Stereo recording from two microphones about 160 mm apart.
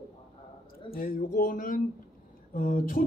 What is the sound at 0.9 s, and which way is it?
Speech, 65° left (ahead or behind).